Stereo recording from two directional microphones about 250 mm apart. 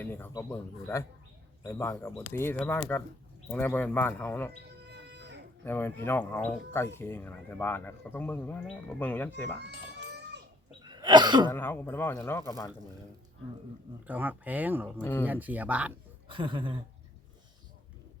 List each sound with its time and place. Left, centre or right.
0.0 s speech: centre
4.8 s bird: right
5.6 s speech: centre
9.6 s a sound: right
10.8 s throat clearing: centre
11.4 s speech: centre
14.1 s speech: centre
15.0 s speech: centre
15.3 s speech: centre
16.3 s speech: centre